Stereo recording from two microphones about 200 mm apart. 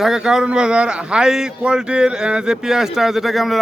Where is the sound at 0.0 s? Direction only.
Centre (ahead or behind).